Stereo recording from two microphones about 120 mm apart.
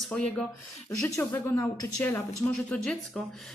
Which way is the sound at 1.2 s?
20° left (ahead or behind).